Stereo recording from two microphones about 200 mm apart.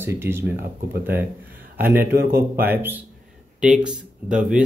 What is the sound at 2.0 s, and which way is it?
Speech, 50° right (ahead or behind).